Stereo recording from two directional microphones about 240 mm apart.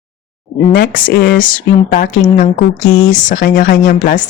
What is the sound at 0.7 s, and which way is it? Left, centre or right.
Speech, left.